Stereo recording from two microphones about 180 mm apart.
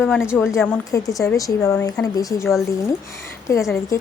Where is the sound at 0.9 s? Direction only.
20° left (ahead or behind).